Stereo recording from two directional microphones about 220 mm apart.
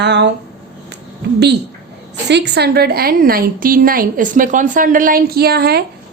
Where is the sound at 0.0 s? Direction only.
50° right (ahead or behind).